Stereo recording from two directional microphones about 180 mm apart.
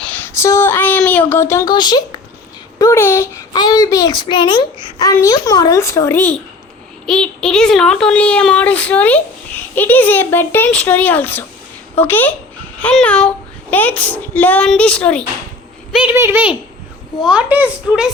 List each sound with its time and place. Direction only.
0.0 s a sound: 10° left (ahead or behind)
2.7 s a child's voice: 15° left (ahead or behind)
16.1 s speech: 15° right (ahead or behind)